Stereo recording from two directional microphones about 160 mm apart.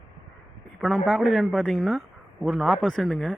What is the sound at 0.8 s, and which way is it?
A man's voice, centre (ahead or behind).